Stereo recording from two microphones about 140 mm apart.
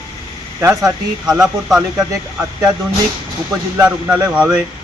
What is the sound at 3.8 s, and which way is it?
Speech, 10° right (ahead or behind).